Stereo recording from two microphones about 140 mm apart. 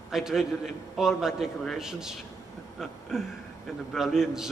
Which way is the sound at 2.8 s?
Centre (ahead or behind).